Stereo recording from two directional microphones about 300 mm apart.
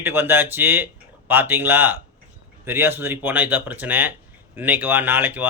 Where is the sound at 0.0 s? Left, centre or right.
Centre.